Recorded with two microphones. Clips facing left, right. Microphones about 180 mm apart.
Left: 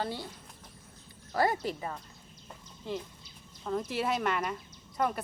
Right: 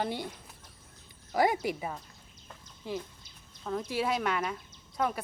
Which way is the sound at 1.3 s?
15° right (ahead or behind).